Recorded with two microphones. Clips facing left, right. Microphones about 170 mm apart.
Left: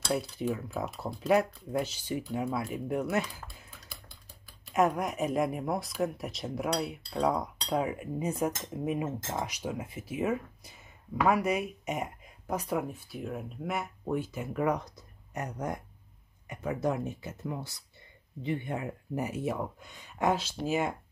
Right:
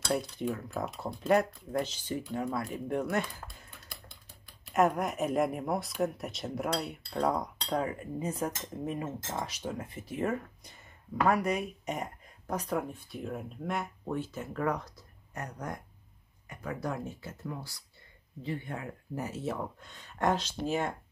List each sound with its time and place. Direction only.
0.1 s speech: 5° left (ahead or behind)